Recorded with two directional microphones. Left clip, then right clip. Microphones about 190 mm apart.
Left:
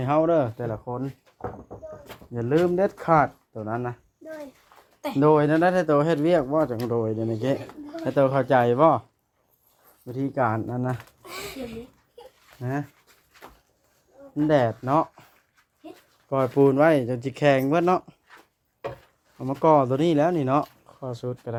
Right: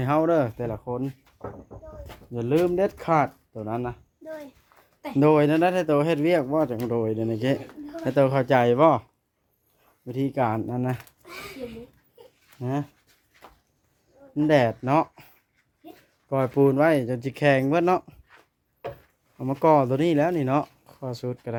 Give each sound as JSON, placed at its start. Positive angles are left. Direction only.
{"t": 0.0, "sound": "speech", "side_deg": -20}
{"t": 2.3, "sound": "speech", "side_deg": -15}
{"t": 5.1, "sound": "speech", "side_deg": -25}
{"t": 10.1, "sound": "speech", "side_deg": -20}
{"t": 12.6, "sound": "speech", "side_deg": -20}
{"t": 14.3, "sound": "speech", "side_deg": -25}
{"t": 16.3, "sound": "speech", "side_deg": -10}
{"t": 19.4, "sound": "speech", "side_deg": -20}